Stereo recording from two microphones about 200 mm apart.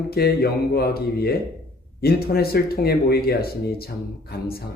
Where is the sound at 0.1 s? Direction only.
50° left (ahead or behind).